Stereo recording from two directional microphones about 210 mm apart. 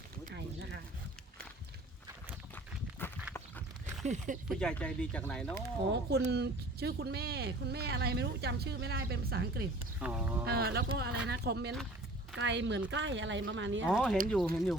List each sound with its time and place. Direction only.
3.0 s walk: 10° left (ahead or behind)
4.0 s speech: 35° right (ahead or behind)
4.4 s speech: 5° left (ahead or behind)
5.9 s speech: 55° right (ahead or behind)
10.0 s speech: 5° right (ahead or behind)
10.4 s speech: 45° right (ahead or behind)
13.8 s speech: 5° right (ahead or behind)